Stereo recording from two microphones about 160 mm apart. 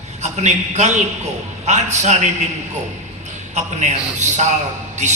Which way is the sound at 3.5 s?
45° right (ahead or behind).